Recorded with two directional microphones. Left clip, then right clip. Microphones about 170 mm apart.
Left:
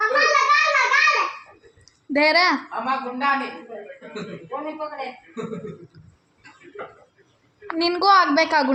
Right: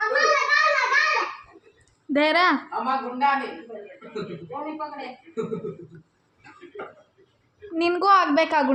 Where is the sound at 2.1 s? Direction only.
10° right (ahead or behind).